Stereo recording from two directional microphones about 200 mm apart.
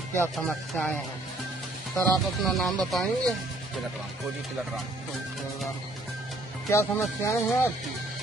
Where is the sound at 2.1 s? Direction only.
Centre (ahead or behind).